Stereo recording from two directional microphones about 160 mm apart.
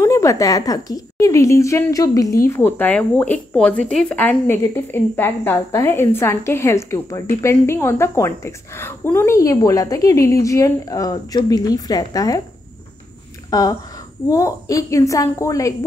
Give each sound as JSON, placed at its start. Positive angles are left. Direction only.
{"t": 0.0, "sound": "a woman's voice", "side_deg": 20}
{"t": 13.5, "sound": "a woman's voice", "side_deg": 25}